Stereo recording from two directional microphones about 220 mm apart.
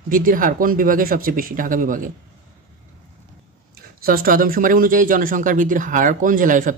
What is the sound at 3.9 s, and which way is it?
Speech, 40° right (ahead or behind).